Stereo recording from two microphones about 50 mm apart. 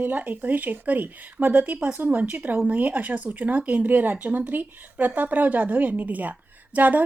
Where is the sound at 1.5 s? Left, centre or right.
Right.